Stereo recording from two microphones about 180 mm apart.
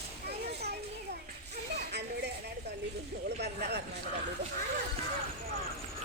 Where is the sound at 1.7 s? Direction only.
70° right (ahead or behind).